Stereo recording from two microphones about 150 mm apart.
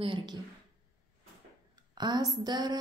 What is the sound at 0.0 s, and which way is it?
Speech, 35° right (ahead or behind).